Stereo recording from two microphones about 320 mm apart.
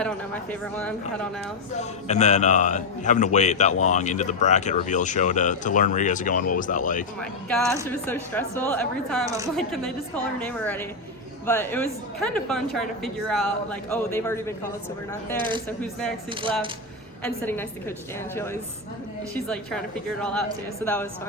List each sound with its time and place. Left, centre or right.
0.6 s a woman's voice: centre
1.7 s speech: left
7.9 s a woman's voice: centre
15.4 s speech: centre
15.8 s a woman's voice: centre
17.2 s speech: centre
19.3 s a woman's voice: centre